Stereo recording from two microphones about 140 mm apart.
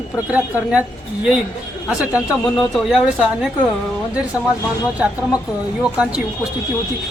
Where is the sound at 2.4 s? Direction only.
Centre (ahead or behind).